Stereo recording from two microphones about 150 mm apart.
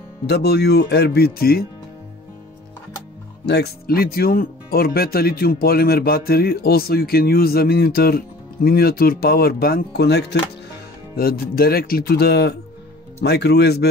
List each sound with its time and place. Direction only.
0.3 s speech: 90° left
3.4 s speech: 90° left